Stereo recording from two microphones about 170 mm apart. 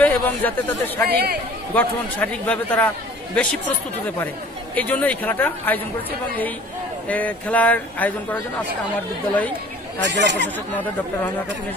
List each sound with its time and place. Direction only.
0.0 s speech: 10° left (ahead or behind)
1.0 s speech: 65° right (ahead or behind)
1.8 s speech: 10° left (ahead or behind)
4.7 s speech: 10° left (ahead or behind)
7.1 s speech: 10° left (ahead or behind)
10.0 s speech: 90° right